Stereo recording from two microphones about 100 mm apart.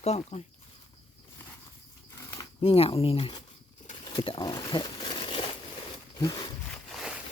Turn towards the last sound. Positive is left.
turn(degrees=40)  # may be behind; listen again after turning